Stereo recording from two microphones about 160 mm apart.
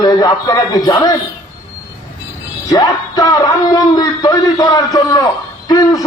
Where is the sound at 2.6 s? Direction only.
20° left (ahead or behind).